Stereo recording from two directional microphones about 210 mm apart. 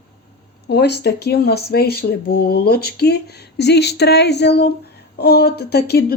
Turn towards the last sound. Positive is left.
turn(degrees=50)  # may be behind; listen again after turning